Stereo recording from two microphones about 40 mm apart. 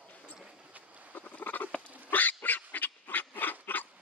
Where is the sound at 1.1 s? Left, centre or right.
Left.